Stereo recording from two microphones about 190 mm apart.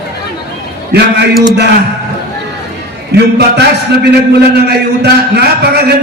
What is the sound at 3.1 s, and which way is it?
A man's voice, 60° right (ahead or behind).